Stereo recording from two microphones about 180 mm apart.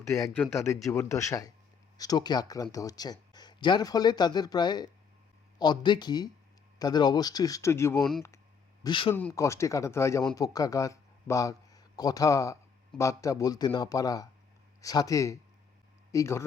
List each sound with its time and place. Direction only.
0.3 s speech: 15° left (ahead or behind)
8.8 s speech: 30° left (ahead or behind)
9.1 s speech: 15° left (ahead or behind)